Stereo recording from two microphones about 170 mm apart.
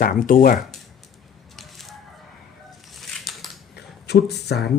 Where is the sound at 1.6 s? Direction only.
Centre (ahead or behind).